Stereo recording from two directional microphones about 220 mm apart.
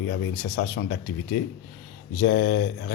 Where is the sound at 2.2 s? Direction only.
50° left (ahead or behind).